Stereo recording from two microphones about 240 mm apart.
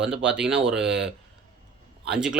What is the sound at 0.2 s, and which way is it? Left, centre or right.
Speech, centre.